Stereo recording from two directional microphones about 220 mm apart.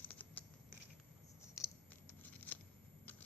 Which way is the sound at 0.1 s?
5° left (ahead or behind).